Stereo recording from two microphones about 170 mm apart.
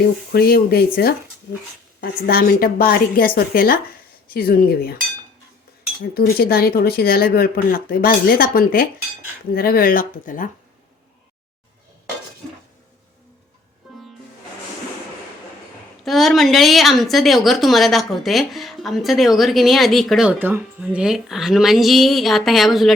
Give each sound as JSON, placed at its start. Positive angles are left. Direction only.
{"t": 0.3, "sound": "speech", "side_deg": 60}
{"t": 6.1, "sound": "speech", "side_deg": 65}
{"t": 13.8, "sound": "music", "side_deg": 0}
{"t": 16.0, "sound": "a woman's voice", "side_deg": 0}